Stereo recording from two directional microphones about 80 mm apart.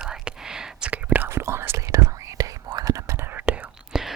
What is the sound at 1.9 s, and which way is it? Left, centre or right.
Whispering, right.